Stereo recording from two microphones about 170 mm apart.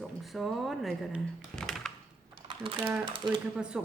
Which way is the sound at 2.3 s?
30° right (ahead or behind).